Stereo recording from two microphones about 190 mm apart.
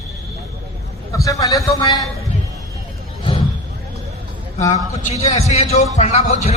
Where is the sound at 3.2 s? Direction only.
25° left (ahead or behind).